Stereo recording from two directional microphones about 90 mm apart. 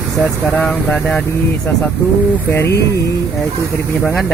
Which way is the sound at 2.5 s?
30° left (ahead or behind).